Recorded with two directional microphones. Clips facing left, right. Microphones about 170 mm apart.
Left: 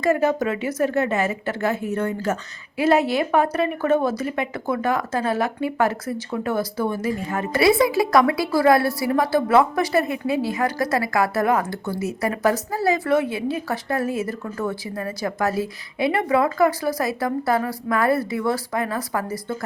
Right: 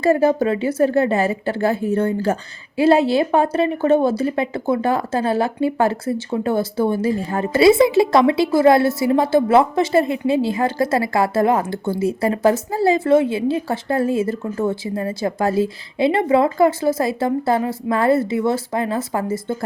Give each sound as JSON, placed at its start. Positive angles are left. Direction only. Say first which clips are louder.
{"t": 0.0, "sound": "a woman's voice", "louder": "right 4 dB", "side_deg": -30}